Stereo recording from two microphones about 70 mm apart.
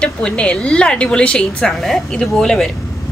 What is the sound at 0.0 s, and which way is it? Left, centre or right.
A woman's voice, centre.